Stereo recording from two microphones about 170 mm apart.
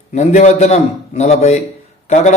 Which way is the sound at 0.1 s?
45° left (ahead or behind).